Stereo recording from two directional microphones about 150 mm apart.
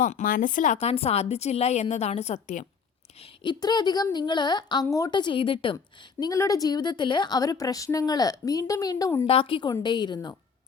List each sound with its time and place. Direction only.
0.0 s speech: 60° left (ahead or behind)
3.2 s a woman's voice: 35° left (ahead or behind)
9.2 s a woman's voice: 35° left (ahead or behind)